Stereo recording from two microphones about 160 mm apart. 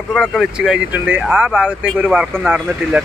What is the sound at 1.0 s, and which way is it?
Speech, 10° right (ahead or behind).